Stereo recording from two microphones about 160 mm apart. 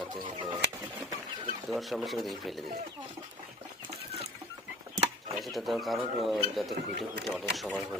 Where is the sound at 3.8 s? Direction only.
40° right (ahead or behind).